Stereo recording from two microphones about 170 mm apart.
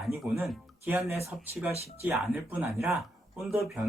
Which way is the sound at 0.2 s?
10° right (ahead or behind).